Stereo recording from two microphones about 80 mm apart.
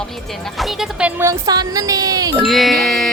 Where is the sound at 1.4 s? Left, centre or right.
Right.